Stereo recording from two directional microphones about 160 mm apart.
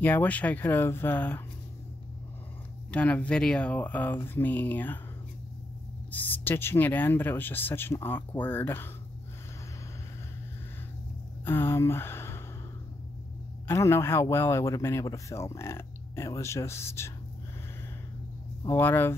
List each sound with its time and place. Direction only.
0.0 s speech: 10° left (ahead or behind)
2.9 s speech: 10° left (ahead or behind)
6.1 s speech: 10° left (ahead or behind)
11.4 s speech: 15° left (ahead or behind)
13.7 s speech: 15° left (ahead or behind)
18.6 s speech: 15° left (ahead or behind)